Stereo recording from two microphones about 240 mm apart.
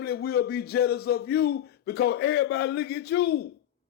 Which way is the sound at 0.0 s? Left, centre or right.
Left.